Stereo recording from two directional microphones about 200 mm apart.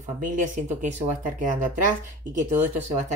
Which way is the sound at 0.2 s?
40° right (ahead or behind).